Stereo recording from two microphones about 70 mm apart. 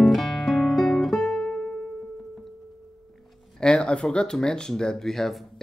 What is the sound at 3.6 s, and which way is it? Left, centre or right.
Speech, centre.